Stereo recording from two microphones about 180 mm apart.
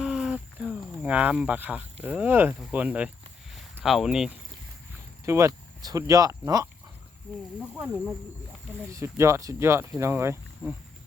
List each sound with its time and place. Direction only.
0.0 s a sound: centre (ahead or behind)
2.0 s speech: 10° right (ahead or behind)
5.2 s speech: 15° right (ahead or behind)
7.3 s speech: centre (ahead or behind)
8.9 s speech: 15° right (ahead or behind)